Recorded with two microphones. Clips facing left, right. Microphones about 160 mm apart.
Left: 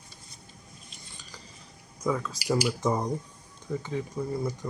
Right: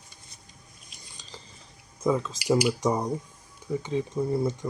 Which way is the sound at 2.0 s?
25° right (ahead or behind).